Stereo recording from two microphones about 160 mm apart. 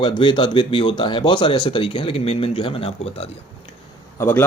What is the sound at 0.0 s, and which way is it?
Speech, 30° left (ahead or behind).